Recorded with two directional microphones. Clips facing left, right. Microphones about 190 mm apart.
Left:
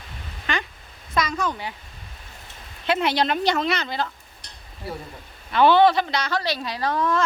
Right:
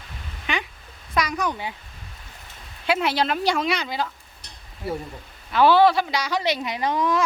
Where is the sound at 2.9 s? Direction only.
5° right (ahead or behind).